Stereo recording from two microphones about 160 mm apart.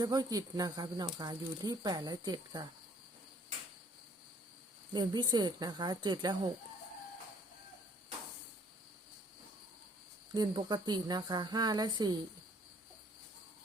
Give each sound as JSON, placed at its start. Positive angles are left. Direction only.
{"t": 0.0, "sound": "speech", "side_deg": -25}
{"t": 4.9, "sound": "speech", "side_deg": -25}
{"t": 10.3, "sound": "speech", "side_deg": -25}